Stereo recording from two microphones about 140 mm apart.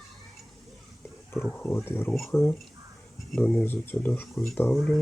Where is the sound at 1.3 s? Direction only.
10° left (ahead or behind).